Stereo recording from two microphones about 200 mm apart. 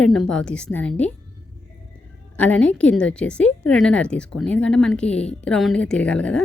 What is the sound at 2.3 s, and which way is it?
A woman's voice, 5° left (ahead or behind).